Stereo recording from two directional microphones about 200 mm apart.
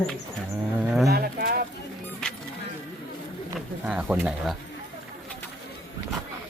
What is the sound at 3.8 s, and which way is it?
Speech, 5° right (ahead or behind).